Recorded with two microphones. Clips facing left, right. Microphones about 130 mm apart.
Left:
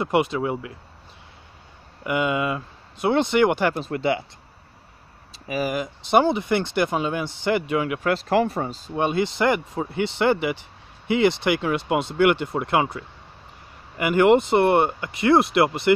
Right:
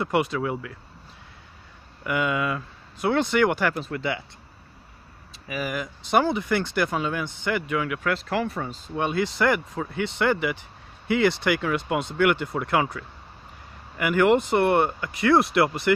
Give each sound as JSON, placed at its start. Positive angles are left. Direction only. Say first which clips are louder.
{"t": 0.0, "sound": "speech", "louder": "left 2 dB", "side_deg": 20}
{"t": 2.0, "sound": "speech", "louder": "left 2 dB", "side_deg": 20}
{"t": 5.5, "sound": "speech", "louder": "left 4 dB", "side_deg": 30}
{"t": 8.9, "sound": "speech", "louder": "left 3 dB", "side_deg": 25}